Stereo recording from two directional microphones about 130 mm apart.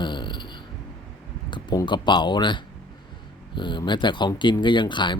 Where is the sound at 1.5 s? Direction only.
35° left (ahead or behind).